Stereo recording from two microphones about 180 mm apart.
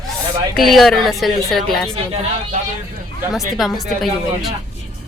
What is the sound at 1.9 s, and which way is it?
Speech, 35° right (ahead or behind).